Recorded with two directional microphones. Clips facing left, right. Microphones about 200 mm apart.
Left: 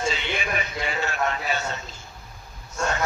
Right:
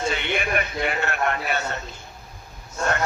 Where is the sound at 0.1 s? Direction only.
60° right (ahead or behind).